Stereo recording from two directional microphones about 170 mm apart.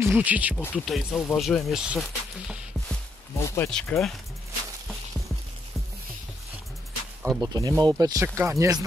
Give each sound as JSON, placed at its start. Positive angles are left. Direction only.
{"t": 0.0, "sound": "speech", "side_deg": -10}
{"t": 0.6, "sound": "speech", "side_deg": 10}
{"t": 0.8, "sound": "speech", "side_deg": 0}
{"t": 3.3, "sound": "speech", "side_deg": 15}
{"t": 7.3, "sound": "speech", "side_deg": -25}